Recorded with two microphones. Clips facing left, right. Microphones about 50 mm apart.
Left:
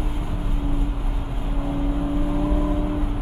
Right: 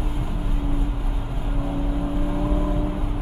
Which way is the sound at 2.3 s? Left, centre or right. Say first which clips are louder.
Left 2 dB; centre.